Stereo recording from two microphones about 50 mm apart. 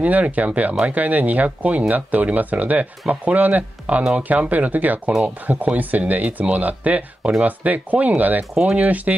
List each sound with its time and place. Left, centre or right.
0.0 s speech: right